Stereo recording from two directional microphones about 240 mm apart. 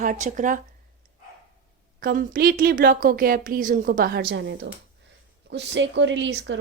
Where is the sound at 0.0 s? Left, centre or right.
Right.